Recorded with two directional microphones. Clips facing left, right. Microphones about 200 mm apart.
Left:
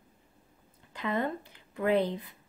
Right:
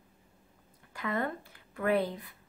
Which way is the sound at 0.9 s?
20° left (ahead or behind).